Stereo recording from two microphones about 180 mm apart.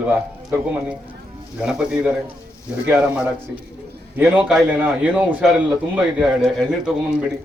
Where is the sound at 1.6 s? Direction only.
5° right (ahead or behind).